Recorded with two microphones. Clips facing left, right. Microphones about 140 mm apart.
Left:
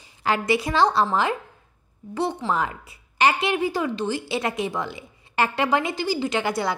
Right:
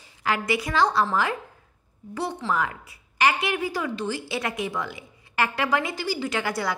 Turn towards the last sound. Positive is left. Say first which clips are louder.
# left 3 dB
turn(degrees=25)  # may be behind; listen again after turning